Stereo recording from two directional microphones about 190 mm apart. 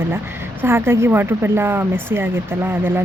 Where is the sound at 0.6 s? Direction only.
10° right (ahead or behind).